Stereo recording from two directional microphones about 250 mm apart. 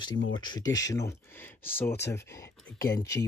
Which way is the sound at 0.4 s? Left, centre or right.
Centre.